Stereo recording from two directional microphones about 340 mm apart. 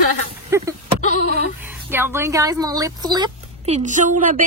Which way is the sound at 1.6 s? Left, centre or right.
Centre.